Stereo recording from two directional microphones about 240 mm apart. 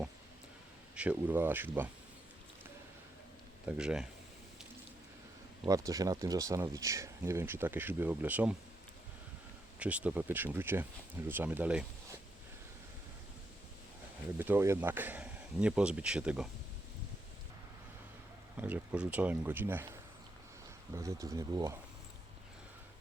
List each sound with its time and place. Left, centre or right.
0.9 s speech: centre
3.7 s speech: centre
5.6 s speech: centre
9.7 s speech: centre
14.3 s speech: centre
18.5 s speech: centre
20.9 s speech: centre